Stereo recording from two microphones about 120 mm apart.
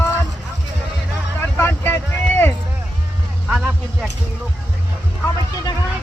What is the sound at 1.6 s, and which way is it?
Vehicle, 20° left (ahead or behind).